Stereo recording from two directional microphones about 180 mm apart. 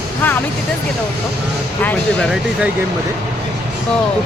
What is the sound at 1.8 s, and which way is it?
Speech, 5° left (ahead or behind).